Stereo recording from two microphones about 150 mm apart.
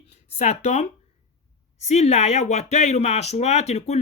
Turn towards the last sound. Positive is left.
turn(degrees=45)  # may be behind; listen again after turning